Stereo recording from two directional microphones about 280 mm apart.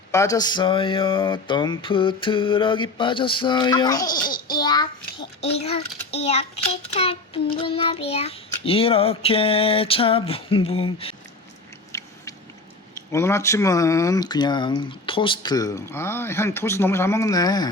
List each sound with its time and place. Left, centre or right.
0.1 s speech: centre
4.2 s a child's voice: left
4.6 s speech: centre
6.1 s child singing: left
11.9 s rodents: centre
13.1 s speech: centre